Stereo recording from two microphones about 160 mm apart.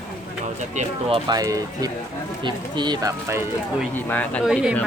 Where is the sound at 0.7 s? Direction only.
35° right (ahead or behind); by 3.4 s 20° right (ahead or behind).